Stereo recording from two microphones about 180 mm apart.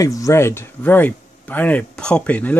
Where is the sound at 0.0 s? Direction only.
20° left (ahead or behind).